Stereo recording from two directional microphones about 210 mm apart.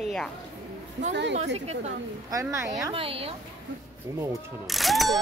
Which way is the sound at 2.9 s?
25° right (ahead or behind).